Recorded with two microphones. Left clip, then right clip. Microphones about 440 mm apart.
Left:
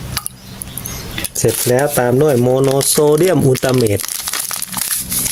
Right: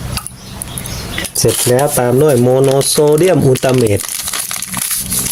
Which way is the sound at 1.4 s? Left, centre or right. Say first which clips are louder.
Right 2 dB; left.